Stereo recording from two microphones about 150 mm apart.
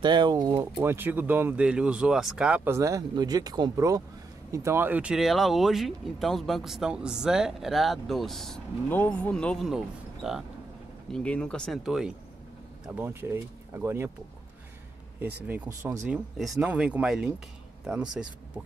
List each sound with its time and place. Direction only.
0.0 s speech: 30° right (ahead or behind); by 8.5 s centre (ahead or behind)
8.8 s speech: 15° left (ahead or behind)
12.8 s speech: 10° right (ahead or behind)
15.4 s speech: 15° right (ahead or behind)
16.1 s speech: centre (ahead or behind)